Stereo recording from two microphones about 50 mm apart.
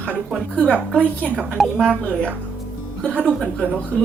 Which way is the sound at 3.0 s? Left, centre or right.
Left.